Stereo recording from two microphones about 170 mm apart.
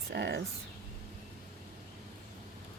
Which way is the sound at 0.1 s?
85° right.